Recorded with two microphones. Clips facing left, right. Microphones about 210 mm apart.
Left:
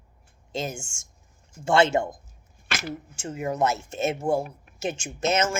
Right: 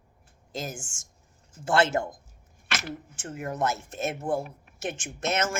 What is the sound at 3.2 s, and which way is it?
Speech, centre (ahead or behind).